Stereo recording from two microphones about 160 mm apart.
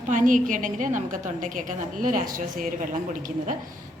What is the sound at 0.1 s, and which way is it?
A woman's voice, 55° right (ahead or behind).